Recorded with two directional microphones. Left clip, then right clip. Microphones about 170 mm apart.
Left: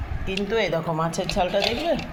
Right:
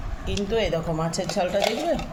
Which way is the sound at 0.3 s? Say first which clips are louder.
Left 1 dB; 10° left (ahead or behind).